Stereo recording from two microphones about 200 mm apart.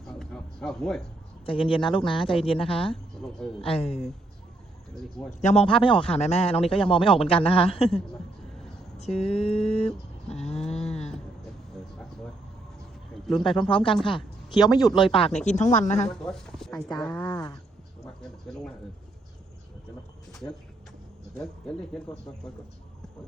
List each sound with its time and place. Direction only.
0.0 s a sound: centre (ahead or behind)
1.5 s a man's voice: 25° left (ahead or behind)
5.3 s a man's voice: 35° left (ahead or behind)
9.1 s a sound: 30° left (ahead or behind)
10.7 s livestock: 30° left (ahead or behind)
13.6 s a man's voice: 25° left (ahead or behind)
15.4 s a sound: 35° left (ahead or behind)
16.0 s speech: 5° left (ahead or behind)
21.3 s speech: 5° left (ahead or behind)